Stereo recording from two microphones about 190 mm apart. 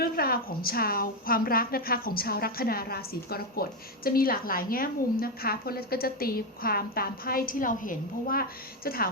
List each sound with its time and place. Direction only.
0.0 s a woman's voice: 50° left (ahead or behind)